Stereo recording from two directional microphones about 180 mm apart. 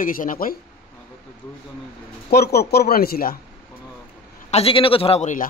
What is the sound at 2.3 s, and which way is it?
Speech, 60° left (ahead or behind).